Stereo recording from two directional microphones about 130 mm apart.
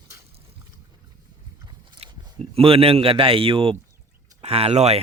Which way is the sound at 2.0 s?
50° right (ahead or behind).